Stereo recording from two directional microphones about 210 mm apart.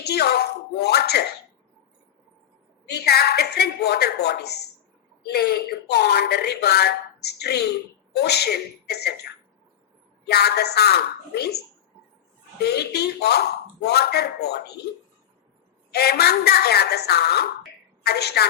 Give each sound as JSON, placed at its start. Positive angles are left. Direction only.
{"t": 0.0, "sound": "speech", "side_deg": 50}
{"t": 2.8, "sound": "speech", "side_deg": 50}
{"t": 10.2, "sound": "speech", "side_deg": 50}
{"t": 12.6, "sound": "speech", "side_deg": 50}
{"t": 15.9, "sound": "a woman's voice", "side_deg": 50}